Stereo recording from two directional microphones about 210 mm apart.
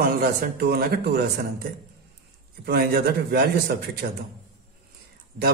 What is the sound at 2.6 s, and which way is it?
Speech, 50° right (ahead or behind).